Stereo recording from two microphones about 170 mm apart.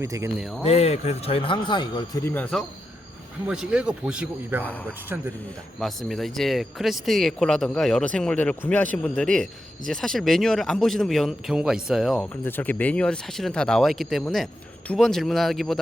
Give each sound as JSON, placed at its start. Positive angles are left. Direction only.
{"t": 0.0, "sound": "speech", "side_deg": -15}
{"t": 0.3, "sound": "speech", "side_deg": 0}
{"t": 0.6, "sound": "a man's voice", "side_deg": 40}
{"t": 2.2, "sound": "speech", "side_deg": 10}
{"t": 3.4, "sound": "speech", "side_deg": -5}
{"t": 4.6, "sound": "speech", "side_deg": 10}
{"t": 5.0, "sound": "speech", "side_deg": -10}
{"t": 5.8, "sound": "speech", "side_deg": 0}
{"t": 12.3, "sound": "speech", "side_deg": 10}